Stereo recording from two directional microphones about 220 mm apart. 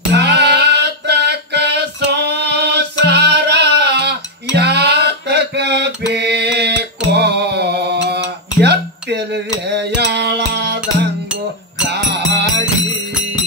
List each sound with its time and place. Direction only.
0.1 s a sound: 50° right (ahead or behind)
3.1 s music: 50° right (ahead or behind)
11.9 s music: 50° right (ahead or behind)